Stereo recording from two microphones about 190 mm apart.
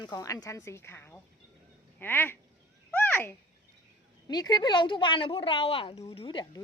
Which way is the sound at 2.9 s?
10° left (ahead or behind).